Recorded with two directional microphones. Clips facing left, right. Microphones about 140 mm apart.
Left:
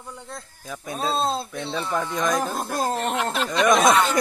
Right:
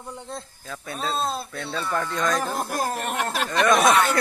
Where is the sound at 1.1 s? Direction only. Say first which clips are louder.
Left 3 dB; 30° left (ahead or behind).